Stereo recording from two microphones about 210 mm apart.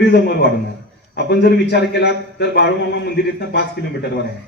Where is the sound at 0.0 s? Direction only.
50° left (ahead or behind).